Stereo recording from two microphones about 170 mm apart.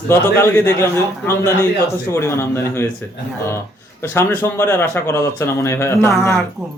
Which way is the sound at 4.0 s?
15° left (ahead or behind).